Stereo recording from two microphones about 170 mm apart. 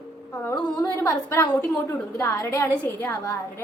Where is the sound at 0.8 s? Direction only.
15° left (ahead or behind).